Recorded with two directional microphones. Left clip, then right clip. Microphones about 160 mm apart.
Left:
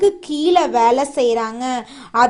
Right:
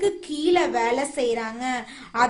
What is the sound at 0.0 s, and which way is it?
A woman's voice, 35° left (ahead or behind).